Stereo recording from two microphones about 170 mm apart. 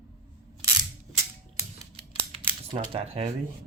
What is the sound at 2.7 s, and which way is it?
Speech, 30° right (ahead or behind).